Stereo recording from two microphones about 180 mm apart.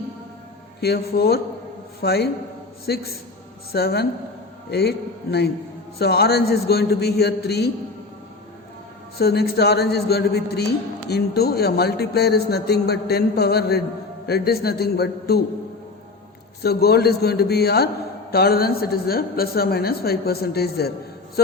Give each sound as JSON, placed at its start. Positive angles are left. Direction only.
{"t": 0.8, "sound": "a man's voice", "side_deg": 60}
{"t": 9.1, "sound": "a man's voice", "side_deg": 60}
{"t": 16.6, "sound": "a man's voice", "side_deg": 60}
{"t": 21.4, "sound": "a sound", "side_deg": 60}